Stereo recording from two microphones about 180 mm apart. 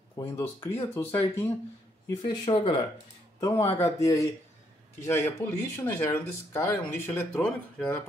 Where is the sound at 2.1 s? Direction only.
25° left (ahead or behind).